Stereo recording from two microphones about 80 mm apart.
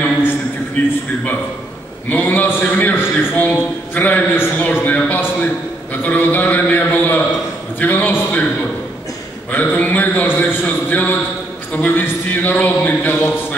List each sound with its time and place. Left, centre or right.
0.8 s a man's voice: centre
2.0 s a man's voice: left
9.5 s a man's voice: left